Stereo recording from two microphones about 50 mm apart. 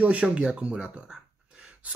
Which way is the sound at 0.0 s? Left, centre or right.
Right.